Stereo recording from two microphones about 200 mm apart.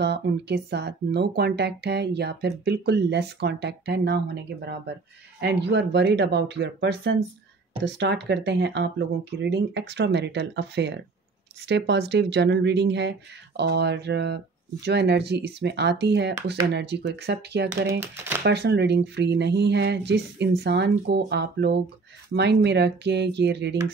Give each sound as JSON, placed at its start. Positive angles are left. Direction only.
{"t": 0.0, "sound": "speech", "side_deg": -55}